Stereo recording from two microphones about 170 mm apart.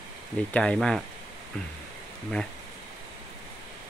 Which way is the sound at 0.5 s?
5° left (ahead or behind).